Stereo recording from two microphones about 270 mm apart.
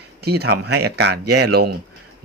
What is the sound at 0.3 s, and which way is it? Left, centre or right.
Speech, right.